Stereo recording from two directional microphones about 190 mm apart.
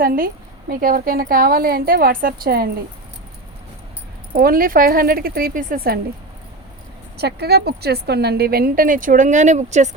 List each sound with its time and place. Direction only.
0.0 s speech: 50° right (ahead or behind)
4.4 s speech: 50° right (ahead or behind)
7.2 s speech: 60° right (ahead or behind); by 9.9 s 40° right (ahead or behind)